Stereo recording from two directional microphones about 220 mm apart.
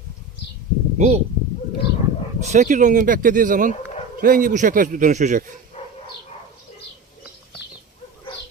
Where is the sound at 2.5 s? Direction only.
35° right (ahead or behind).